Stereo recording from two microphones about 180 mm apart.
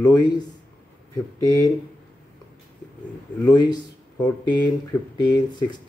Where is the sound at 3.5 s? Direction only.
25° left (ahead or behind).